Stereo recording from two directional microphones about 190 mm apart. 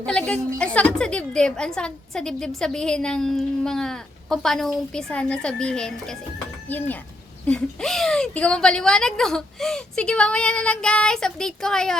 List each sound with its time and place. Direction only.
0.0 s a woman's voice: 5° left (ahead or behind)